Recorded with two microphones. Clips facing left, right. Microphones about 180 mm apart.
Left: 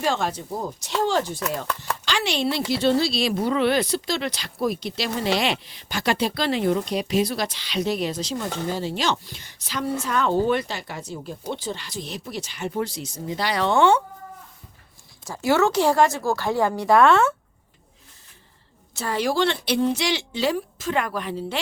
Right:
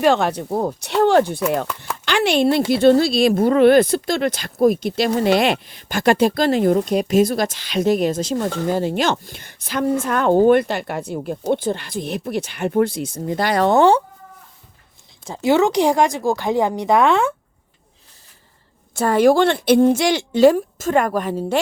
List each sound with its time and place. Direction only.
0.0 s speech: 65° right (ahead or behind); by 14.0 s 35° right (ahead or behind)
15.3 s speech: 20° right (ahead or behind)
18.9 s speech: 50° right (ahead or behind)